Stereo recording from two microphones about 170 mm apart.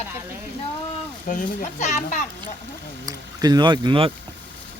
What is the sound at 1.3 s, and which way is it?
Speech, 45° left (ahead or behind).